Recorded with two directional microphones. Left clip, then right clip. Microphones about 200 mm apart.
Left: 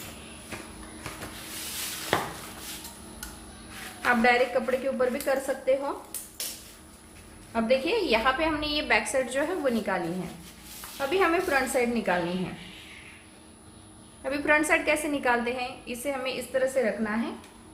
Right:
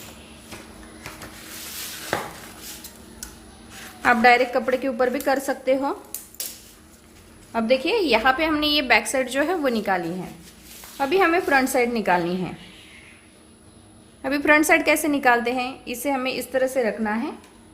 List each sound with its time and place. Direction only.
4.0 s a woman's voice: 50° right (ahead or behind)
7.5 s a woman's voice: 45° right (ahead or behind)
14.2 s a woman's voice: 50° right (ahead or behind)